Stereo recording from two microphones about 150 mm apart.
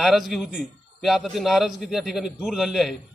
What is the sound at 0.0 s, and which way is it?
A man's voice, centre (ahead or behind).